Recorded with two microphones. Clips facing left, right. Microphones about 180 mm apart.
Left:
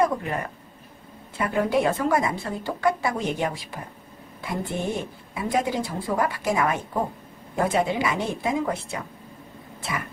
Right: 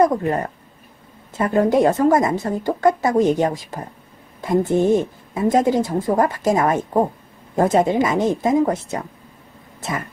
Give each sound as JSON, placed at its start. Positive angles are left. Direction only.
{"t": 0.0, "sound": "speech", "side_deg": -40}